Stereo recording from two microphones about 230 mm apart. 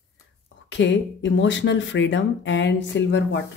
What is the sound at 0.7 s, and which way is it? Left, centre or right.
Speech, left.